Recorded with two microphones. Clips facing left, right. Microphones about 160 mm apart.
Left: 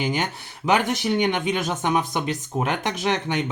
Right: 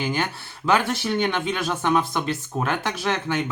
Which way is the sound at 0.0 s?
15° left (ahead or behind).